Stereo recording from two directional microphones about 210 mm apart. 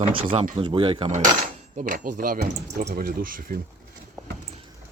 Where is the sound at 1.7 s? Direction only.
40° right (ahead or behind).